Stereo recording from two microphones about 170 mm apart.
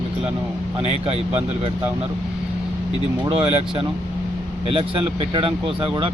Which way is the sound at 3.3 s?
35° right (ahead or behind).